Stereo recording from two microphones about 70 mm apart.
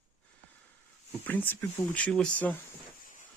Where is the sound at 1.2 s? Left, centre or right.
Left.